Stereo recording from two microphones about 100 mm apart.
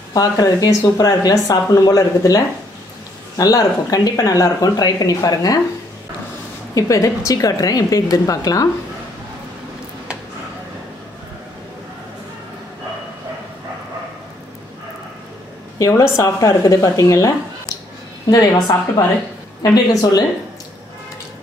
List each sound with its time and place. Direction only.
0.1 s speech: 40° left (ahead or behind)
6.7 s speech: 35° left (ahead or behind)
15.8 s speech: 30° left (ahead or behind)
18.3 s speech: 35° left (ahead or behind)